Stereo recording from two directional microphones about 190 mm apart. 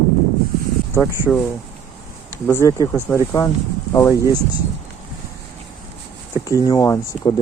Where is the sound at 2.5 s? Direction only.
15° left (ahead or behind).